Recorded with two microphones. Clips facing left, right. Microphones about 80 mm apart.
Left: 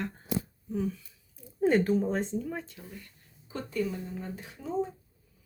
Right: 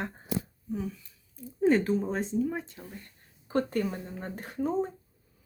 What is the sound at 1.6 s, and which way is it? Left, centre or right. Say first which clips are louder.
Speech: even; centre.